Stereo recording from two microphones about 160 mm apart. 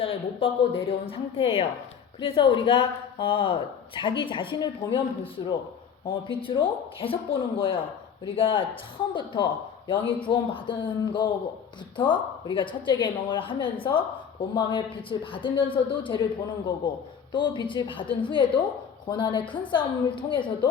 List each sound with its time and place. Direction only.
0.0 s a woman's voice: 40° left (ahead or behind)
17.3 s a woman's voice: 30° left (ahead or behind)